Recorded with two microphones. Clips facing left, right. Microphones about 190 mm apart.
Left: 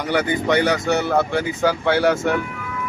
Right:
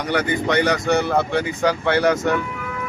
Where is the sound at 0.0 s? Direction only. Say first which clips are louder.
Left 1 dB; 5° left (ahead or behind).